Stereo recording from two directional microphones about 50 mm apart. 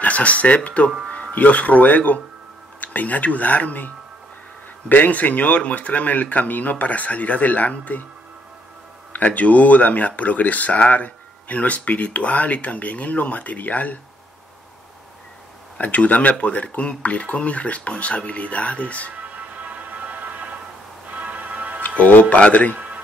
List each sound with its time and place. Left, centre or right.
0.0 s speech: left
9.1 s speech: left
15.8 s speech: left
19.1 s music: right
21.8 s music: left
22.3 s speech: left
22.8 s a sound: right